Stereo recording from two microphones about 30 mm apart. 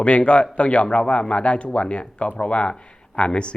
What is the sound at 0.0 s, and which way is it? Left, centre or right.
Speech, left.